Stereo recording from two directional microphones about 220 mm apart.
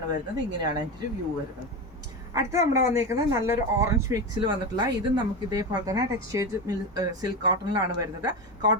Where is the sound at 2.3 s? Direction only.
15° right (ahead or behind).